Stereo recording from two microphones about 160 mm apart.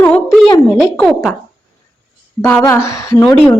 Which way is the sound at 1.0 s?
5° left (ahead or behind).